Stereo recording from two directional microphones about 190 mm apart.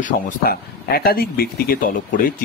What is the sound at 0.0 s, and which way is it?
Speech, 50° left (ahead or behind).